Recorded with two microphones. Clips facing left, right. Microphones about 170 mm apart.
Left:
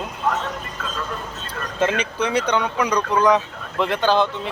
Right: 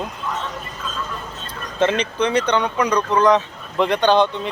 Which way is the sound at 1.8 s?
10° left (ahead or behind).